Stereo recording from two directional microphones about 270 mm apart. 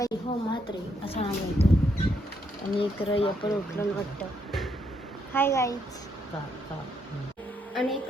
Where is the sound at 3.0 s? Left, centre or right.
Left.